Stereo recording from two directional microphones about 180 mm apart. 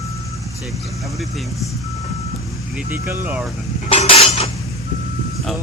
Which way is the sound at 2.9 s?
15° right (ahead or behind).